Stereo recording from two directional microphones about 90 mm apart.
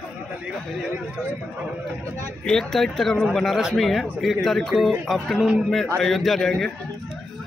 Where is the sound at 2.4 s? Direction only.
5° left (ahead or behind).